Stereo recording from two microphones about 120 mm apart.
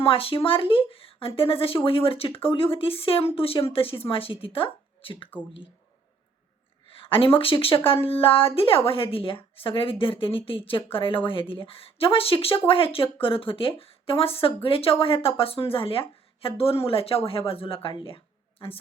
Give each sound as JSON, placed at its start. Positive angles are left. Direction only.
{"t": 0.0, "sound": "speech", "side_deg": 50}
{"t": 6.9, "sound": "speech", "side_deg": 50}